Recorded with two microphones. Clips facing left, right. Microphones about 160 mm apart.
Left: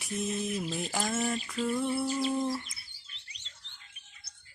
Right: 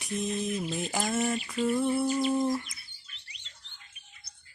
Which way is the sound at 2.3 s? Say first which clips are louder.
Right 4 dB; 15° right (ahead or behind).